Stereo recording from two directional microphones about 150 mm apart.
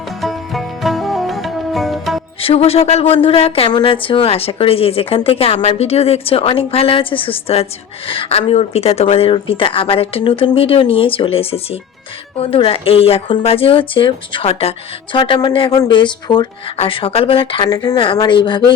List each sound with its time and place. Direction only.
0.2 s music: centre (ahead or behind)
2.4 s speech: 40° left (ahead or behind)